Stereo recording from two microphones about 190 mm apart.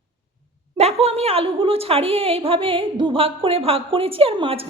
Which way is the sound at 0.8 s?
35° right (ahead or behind).